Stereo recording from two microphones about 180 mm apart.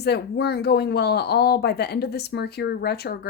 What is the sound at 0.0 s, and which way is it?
Speech, 65° left (ahead or behind).